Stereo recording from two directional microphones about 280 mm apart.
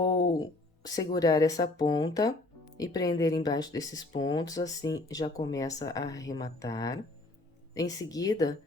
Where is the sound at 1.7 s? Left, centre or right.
Centre.